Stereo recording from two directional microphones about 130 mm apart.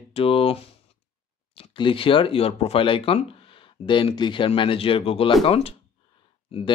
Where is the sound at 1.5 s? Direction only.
40° left (ahead or behind).